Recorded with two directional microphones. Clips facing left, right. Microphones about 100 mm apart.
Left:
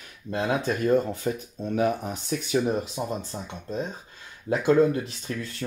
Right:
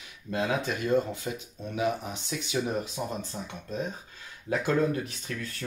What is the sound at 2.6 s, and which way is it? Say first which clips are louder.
Speech: left 4 dB; 25° left (ahead or behind).